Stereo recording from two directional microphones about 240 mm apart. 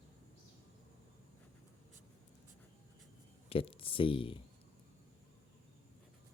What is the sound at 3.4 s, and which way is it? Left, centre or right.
Speech, left.